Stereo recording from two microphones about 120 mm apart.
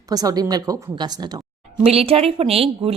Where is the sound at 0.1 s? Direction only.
30° right (ahead or behind).